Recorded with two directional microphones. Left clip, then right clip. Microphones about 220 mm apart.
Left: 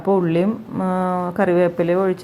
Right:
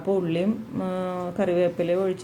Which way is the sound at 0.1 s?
20° left (ahead or behind).